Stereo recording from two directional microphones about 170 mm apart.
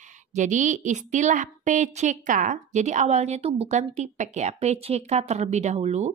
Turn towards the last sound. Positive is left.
turn(degrees=-40)  # may be behind; listen again after turning